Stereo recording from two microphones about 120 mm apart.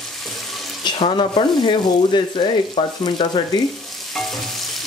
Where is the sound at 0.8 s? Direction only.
40° left (ahead or behind).